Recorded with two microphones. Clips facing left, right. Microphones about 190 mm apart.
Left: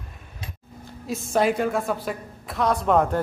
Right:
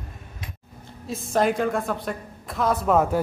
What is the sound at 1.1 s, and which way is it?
A woman's voice, centre (ahead or behind).